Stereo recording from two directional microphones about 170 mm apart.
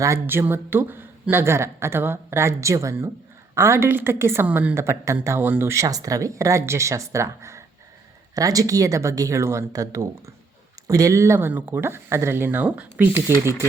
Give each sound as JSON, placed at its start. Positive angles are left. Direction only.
{"t": 0.0, "sound": "a woman's voice", "side_deg": -15}